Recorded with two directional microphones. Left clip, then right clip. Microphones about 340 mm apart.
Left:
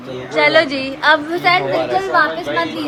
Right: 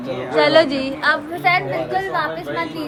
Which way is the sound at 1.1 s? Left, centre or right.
Centre.